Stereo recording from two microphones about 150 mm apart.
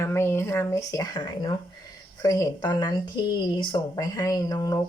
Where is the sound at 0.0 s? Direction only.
15° left (ahead or behind).